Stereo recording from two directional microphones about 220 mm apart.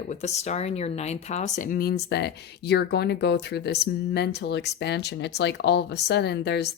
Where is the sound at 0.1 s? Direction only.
30° left (ahead or behind).